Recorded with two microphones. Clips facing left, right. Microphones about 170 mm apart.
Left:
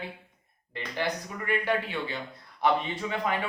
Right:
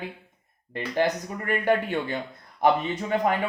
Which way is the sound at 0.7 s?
45° right (ahead or behind).